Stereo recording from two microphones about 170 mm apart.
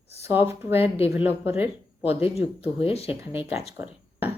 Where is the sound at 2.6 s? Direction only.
35° left (ahead or behind).